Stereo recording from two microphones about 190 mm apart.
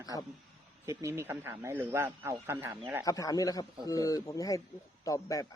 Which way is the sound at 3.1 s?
20° left (ahead or behind).